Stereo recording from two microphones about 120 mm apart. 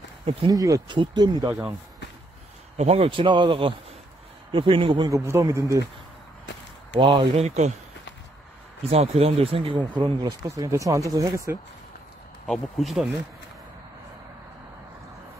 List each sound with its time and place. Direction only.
0.2 s speech: 55° right (ahead or behind)
0.5 s speech: 30° right (ahead or behind)
1.5 s speech: 10° right (ahead or behind)
2.8 s speech: 60° right (ahead or behind)
5.0 s speech: 25° right (ahead or behind)
7.0 s speech: 45° right (ahead or behind)
7.4 s speech: 70° right (ahead or behind)
8.8 s speech: 55° right (ahead or behind); by 10.3 s 40° right (ahead or behind)
10.6 s speech: 25° right (ahead or behind)
12.4 s speech: centre (ahead or behind)